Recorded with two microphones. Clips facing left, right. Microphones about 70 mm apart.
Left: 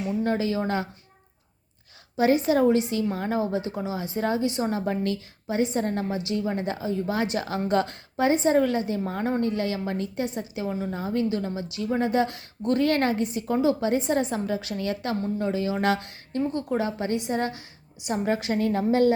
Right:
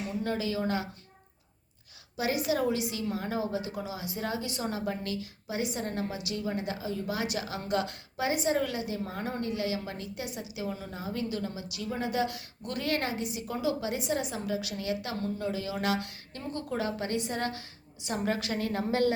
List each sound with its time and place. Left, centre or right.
0.2 s a woman's voice: left
2.1 s a woman's voice: left
4.9 s a woman's voice: left